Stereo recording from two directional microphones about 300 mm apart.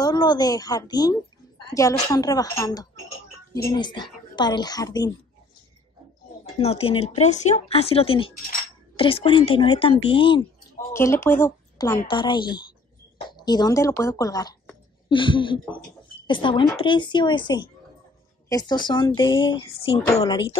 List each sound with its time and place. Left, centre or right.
0.0 s speech: centre
6.6 s speech: centre